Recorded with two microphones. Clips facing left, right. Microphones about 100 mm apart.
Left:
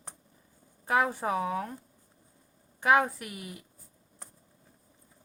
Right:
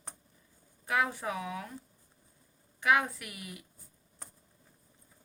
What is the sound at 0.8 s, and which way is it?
Speech, 40° left (ahead or behind).